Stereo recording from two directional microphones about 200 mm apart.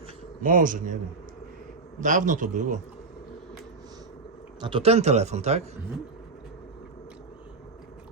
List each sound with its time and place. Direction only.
0.4 s speech: 40° right (ahead or behind)
2.0 s speech: 40° right (ahead or behind)
4.6 s speech: 25° right (ahead or behind)